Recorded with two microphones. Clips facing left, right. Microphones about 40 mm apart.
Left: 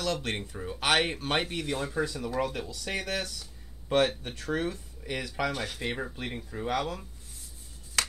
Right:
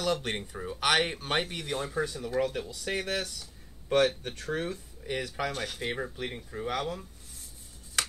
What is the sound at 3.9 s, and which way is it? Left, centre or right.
Speech, left.